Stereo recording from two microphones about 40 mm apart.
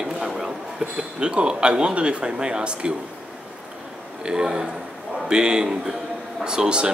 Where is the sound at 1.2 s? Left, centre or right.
Right.